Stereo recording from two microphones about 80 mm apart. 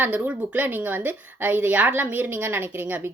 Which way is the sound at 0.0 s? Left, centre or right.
Centre.